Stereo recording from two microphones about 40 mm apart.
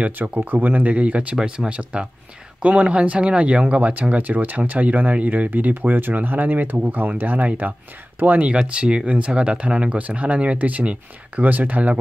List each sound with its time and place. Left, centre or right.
0.5 s speech: right
1.3 s speech: centre
1.7 s speech: right
4.2 s speech: right
8.2 s speech: right
8.5 s speech: right
9.9 s speech: right